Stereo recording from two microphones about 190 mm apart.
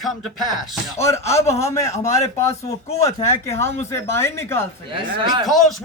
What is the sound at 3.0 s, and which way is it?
Speech, 15° left (ahead or behind).